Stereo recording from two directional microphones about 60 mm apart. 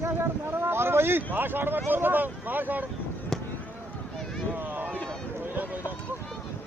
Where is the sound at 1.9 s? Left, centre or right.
Right.